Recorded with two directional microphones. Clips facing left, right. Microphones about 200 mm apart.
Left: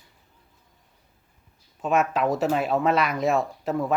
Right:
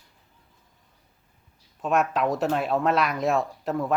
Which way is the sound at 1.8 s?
Centre (ahead or behind).